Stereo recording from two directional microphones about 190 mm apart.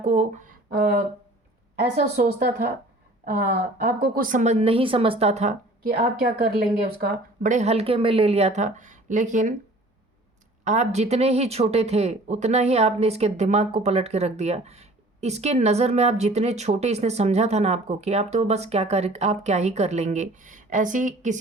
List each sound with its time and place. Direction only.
0.0 s speech: 35° right (ahead or behind)
2.1 s speech: 55° right (ahead or behind); by 5.9 s 35° right (ahead or behind)
7.0 s speech: 55° right (ahead or behind)
7.5 s speech: 35° right (ahead or behind)
10.6 s speech: 40° right (ahead or behind)